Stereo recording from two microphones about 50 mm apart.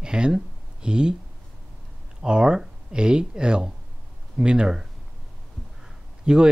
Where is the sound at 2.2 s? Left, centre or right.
Centre.